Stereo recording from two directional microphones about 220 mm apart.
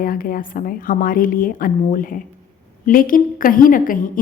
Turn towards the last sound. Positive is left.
turn(degrees=40)  # may be behind; listen again after turning